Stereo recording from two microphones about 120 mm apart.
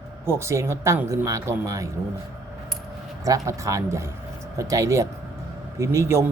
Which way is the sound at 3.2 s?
30° right (ahead or behind).